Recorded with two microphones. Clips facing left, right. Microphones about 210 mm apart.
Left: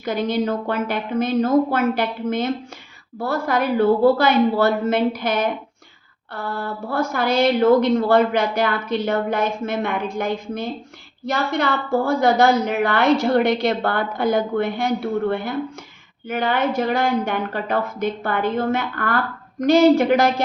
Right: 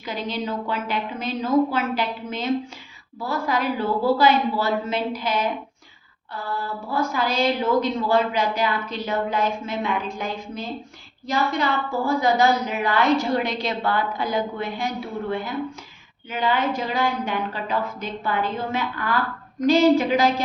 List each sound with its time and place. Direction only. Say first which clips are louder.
0.0 s a woman's voice: left 7 dB; 50° left (ahead or behind)